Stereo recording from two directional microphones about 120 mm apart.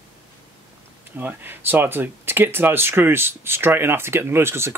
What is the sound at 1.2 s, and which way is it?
Speech, 15° right (ahead or behind).